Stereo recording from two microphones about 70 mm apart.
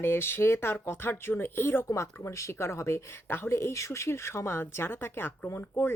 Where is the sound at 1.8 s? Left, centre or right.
Left.